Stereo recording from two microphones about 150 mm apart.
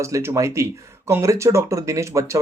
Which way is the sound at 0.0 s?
20° right (ahead or behind).